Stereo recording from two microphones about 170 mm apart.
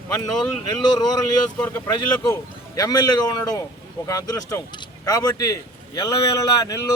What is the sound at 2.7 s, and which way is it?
Speech, 20° left (ahead or behind).